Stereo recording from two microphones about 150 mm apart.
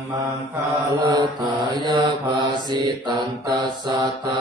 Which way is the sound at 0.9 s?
30° right (ahead or behind).